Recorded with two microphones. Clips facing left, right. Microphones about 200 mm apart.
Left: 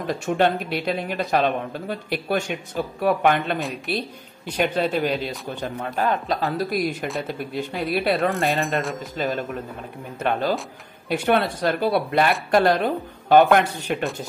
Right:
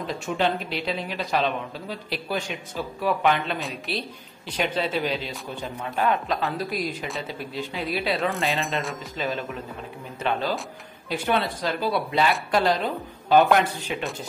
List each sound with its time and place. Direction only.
0.0 s speech: 50° left (ahead or behind)
3.5 s speech: centre (ahead or behind)
4.6 s speech: 50° left (ahead or behind)
5.9 s speech: 35° left (ahead or behind)
6.6 s speech: 50° left (ahead or behind)
8.3 s speech: centre (ahead or behind)
9.2 s speech: 40° left (ahead or behind)
11.1 s speech: 60° left (ahead or behind)